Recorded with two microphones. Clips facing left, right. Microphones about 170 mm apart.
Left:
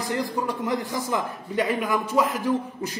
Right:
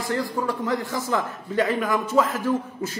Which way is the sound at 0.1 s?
20° left (ahead or behind).